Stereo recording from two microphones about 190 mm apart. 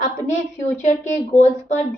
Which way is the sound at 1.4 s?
35° left (ahead or behind).